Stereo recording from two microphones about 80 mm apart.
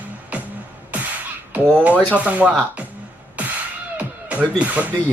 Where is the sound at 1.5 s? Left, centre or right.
Centre.